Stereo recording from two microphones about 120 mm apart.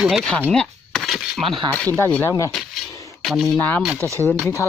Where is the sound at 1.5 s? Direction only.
45° right (ahead or behind).